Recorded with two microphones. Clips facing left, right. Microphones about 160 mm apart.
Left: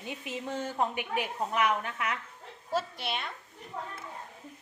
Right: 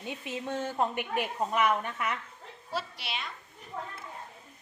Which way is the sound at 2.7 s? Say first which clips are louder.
Left 4 dB; 45° left (ahead or behind).